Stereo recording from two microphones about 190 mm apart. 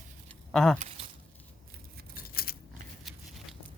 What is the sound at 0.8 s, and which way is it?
Speech, 35° right (ahead or behind).